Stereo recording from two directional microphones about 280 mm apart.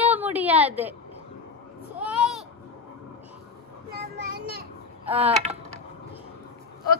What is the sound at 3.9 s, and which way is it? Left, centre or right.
Child singing, right.